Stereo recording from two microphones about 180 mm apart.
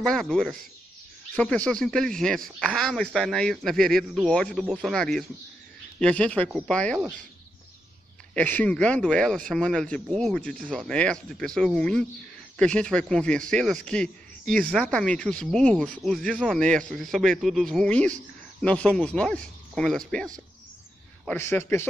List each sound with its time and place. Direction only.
0.0 s a man's voice: 5° left (ahead or behind)
8.4 s a man's voice: 10° left (ahead or behind)
21.3 s speech: 15° left (ahead or behind)